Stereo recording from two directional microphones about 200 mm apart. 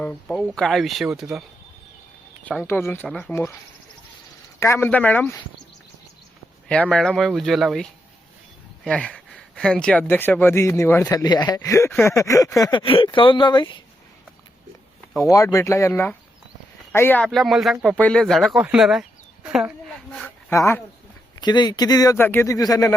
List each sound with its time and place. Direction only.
0.0 s speech: 5° left (ahead or behind)
4.6 s speech: 10° left (ahead or behind)
6.7 s speech: 5° left (ahead or behind); by 13.7 s 20° left (ahead or behind)
15.2 s speech: 15° left (ahead or behind); by 19.7 s 5° right (ahead or behind)
20.1 s speech: 10° left (ahead or behind)